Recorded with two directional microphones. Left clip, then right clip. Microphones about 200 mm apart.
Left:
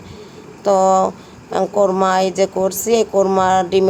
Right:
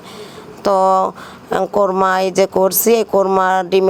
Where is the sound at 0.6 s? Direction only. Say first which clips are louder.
Even; 15° right (ahead or behind).